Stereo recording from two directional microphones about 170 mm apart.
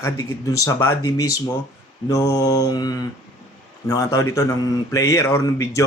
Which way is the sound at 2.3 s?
20° left (ahead or behind).